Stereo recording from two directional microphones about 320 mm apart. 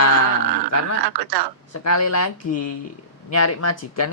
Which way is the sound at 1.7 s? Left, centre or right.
Left.